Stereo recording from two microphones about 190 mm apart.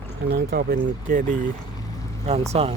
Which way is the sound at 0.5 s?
50° right (ahead or behind).